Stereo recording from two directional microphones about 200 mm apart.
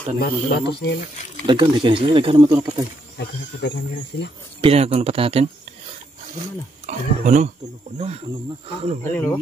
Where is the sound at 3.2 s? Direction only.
55° left (ahead or behind).